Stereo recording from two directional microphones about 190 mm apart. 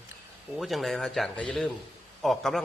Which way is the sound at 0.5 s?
Centre (ahead or behind).